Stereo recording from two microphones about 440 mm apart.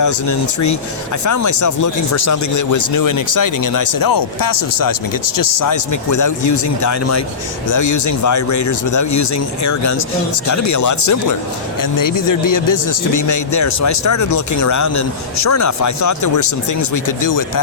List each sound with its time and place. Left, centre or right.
0.0 s a man's voice: left